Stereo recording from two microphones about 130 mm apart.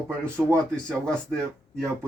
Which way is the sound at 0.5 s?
10° left (ahead or behind).